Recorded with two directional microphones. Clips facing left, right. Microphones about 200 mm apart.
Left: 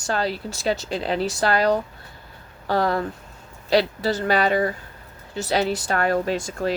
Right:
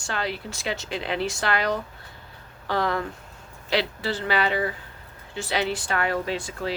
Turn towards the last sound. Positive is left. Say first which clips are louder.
# left 5 dB
turn(degrees=45)  # may be behind; listen again after turning